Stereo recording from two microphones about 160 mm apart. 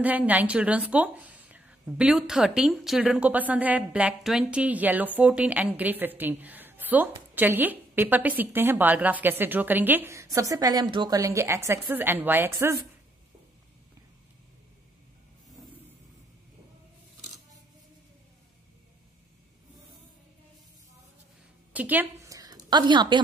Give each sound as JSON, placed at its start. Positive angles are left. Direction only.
{"t": 0.0, "sound": "a woman's voice", "side_deg": -10}
{"t": 21.7, "sound": "a woman's voice", "side_deg": -10}